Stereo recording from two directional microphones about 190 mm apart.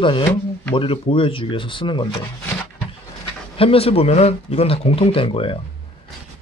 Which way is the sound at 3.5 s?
30° left (ahead or behind).